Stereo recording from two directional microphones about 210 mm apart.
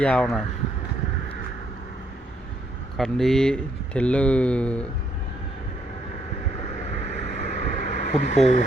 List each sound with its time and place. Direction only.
0.0 s speech: 5° left (ahead or behind)
3.0 s speech: centre (ahead or behind)
6.9 s vehicle: 35° left (ahead or behind)